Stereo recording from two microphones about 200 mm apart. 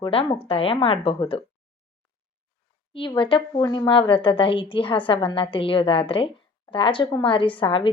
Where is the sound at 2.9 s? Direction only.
25° left (ahead or behind).